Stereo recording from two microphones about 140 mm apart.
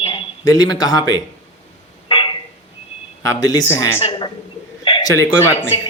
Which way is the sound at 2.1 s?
35° left (ahead or behind).